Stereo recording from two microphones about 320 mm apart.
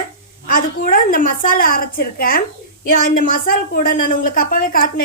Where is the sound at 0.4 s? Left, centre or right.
Left.